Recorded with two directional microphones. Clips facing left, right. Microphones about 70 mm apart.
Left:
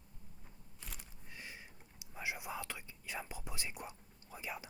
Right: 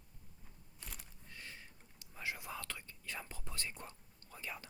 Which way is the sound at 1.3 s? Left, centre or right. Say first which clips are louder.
Left 2 dB; centre.